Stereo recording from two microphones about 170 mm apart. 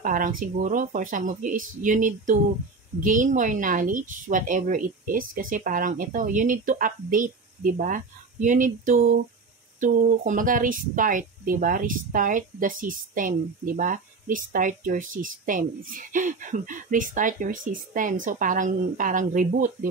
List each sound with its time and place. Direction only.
0.0 s speech: 55° right (ahead or behind)